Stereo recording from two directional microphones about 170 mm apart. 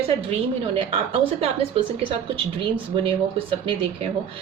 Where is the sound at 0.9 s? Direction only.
35° right (ahead or behind).